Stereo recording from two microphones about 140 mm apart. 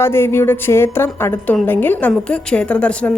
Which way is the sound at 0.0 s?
15° left (ahead or behind).